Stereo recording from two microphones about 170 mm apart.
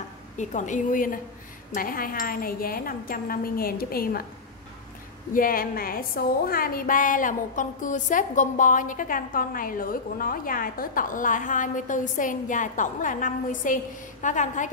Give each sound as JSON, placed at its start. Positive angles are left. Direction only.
{"t": 0.4, "sound": "a woman's voice", "side_deg": 45}
{"t": 1.7, "sound": "wind chime", "side_deg": 55}
{"t": 5.3, "sound": "a woman's voice", "side_deg": 55}